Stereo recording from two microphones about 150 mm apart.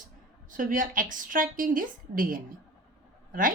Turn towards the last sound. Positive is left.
turn(degrees=-65)  # may be behind; listen again after turning